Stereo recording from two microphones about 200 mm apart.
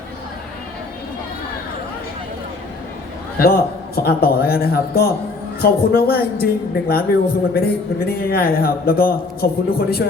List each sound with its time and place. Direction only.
3.3 s a man's voice: 50° left (ahead or behind)